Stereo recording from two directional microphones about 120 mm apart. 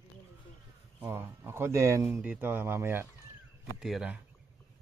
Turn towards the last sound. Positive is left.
turn(degrees=-5)  # may be behind; listen again after turning